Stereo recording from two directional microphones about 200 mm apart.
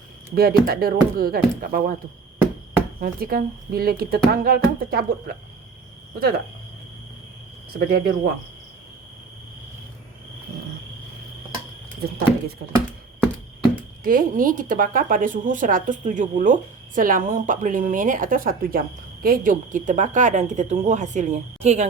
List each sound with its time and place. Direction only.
0.3 s speech: 50° right (ahead or behind)
3.0 s speech: 50° right (ahead or behind)
7.7 s speech: 50° right (ahead or behind)
14.0 s a woman's voice: 45° right (ahead or behind)